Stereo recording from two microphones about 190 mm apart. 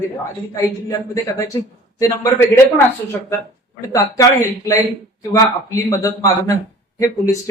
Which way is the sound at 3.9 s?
15° left (ahead or behind).